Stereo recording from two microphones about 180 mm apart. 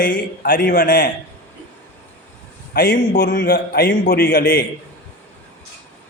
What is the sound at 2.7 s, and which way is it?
A man's voice, 55° left (ahead or behind).